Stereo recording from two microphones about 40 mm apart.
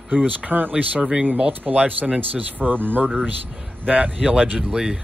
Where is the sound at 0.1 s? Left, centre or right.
Right.